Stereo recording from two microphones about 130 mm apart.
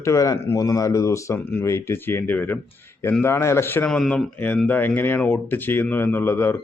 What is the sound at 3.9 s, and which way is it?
Speech, 5° left (ahead or behind).